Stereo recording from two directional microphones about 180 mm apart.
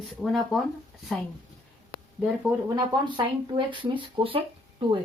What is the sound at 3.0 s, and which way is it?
Speech, 25° right (ahead or behind).